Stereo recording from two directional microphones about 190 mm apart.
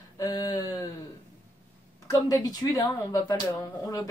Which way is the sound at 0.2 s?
20° left (ahead or behind).